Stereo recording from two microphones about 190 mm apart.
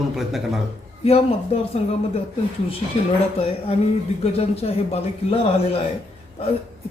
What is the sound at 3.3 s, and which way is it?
Speech, 30° left (ahead or behind).